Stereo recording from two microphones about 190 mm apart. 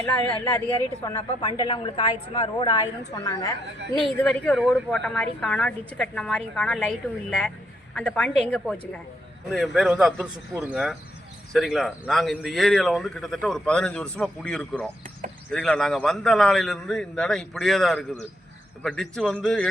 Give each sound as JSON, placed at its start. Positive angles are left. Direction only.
{"t": 0.0, "sound": "speech", "side_deg": 10}
{"t": 1.0, "sound": "speech", "side_deg": 25}
{"t": 4.2, "sound": "speech", "side_deg": 5}